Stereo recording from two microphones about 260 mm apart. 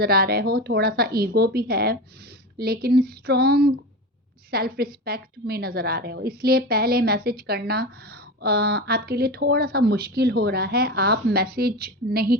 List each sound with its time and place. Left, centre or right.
0.0 s a woman's voice: right